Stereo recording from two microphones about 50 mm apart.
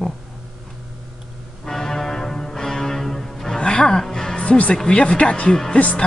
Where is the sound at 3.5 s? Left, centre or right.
Centre.